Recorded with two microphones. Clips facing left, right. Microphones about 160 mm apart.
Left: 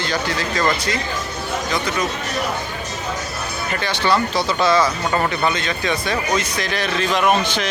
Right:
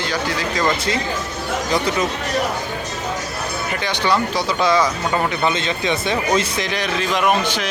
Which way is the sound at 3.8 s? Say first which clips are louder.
Left 1 dB; 15° right (ahead or behind).